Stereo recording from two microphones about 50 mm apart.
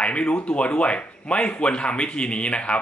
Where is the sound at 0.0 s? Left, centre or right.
Left.